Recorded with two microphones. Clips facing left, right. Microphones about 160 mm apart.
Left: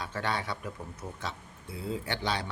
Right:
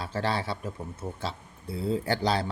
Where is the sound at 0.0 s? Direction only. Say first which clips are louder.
Right 4 dB; 30° right (ahead or behind).